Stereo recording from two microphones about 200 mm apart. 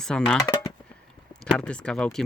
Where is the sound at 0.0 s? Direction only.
5° left (ahead or behind).